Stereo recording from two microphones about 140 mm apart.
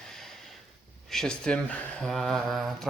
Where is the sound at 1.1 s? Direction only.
5° left (ahead or behind).